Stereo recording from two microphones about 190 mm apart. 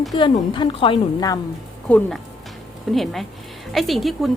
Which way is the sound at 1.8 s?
5° left (ahead or behind).